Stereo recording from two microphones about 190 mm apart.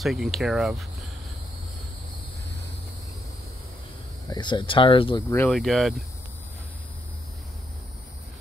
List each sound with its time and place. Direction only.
0.0 s speech: centre (ahead or behind)
4.3 s speech: 25° left (ahead or behind)
5.3 s speech: 10° left (ahead or behind)
5.6 s speech: centre (ahead or behind)